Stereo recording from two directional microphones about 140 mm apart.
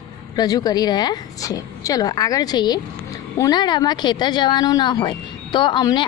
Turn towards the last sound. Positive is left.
turn(degrees=35)  # may be behind; listen again after turning